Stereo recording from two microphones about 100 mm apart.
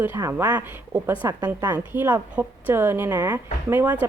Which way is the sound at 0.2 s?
30° right (ahead or behind).